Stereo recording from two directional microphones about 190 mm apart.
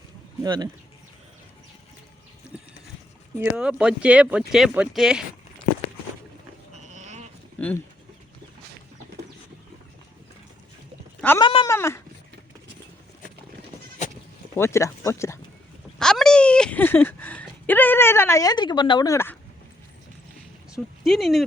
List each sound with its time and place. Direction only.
0.4 s speech: 20° right (ahead or behind)
2.5 s boat: 5° right (ahead or behind)
3.3 s speech: 10° right (ahead or behind)
6.9 s a sound: 40° right (ahead or behind)
11.3 s cat: 25° left (ahead or behind)
11.7 s a sound: 15° left (ahead or behind)
14.0 s bleat: 40° left (ahead or behind)
14.5 s speech: 15° left (ahead or behind)
16.0 s a sound: 5° left (ahead or behind)
20.7 s speech: centre (ahead or behind)